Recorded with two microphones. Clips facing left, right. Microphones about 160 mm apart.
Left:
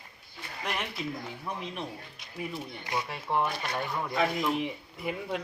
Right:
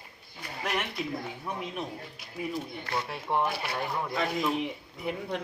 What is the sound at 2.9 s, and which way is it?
Speech, 15° left (ahead or behind).